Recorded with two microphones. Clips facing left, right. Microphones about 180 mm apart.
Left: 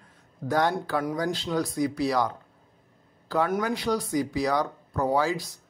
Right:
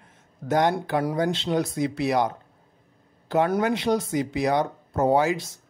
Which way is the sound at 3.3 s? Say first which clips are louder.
Right 4 dB; 25° right (ahead or behind).